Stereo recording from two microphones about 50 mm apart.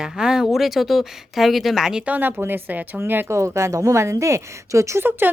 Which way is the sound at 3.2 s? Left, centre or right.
Right.